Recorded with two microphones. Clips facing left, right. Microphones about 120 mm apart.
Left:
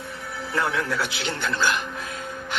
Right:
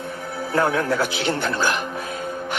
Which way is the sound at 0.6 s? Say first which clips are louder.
Right 5 dB; 45° right (ahead or behind).